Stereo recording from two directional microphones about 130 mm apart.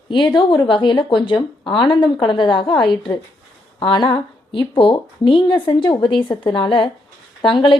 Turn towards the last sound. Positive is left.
turn(degrees=40)  # may be behind; listen again after turning